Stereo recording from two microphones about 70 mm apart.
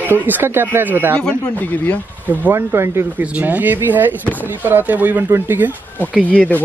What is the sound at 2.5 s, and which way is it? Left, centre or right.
Speech, right.